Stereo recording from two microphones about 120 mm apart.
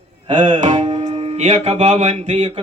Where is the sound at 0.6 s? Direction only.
90° right.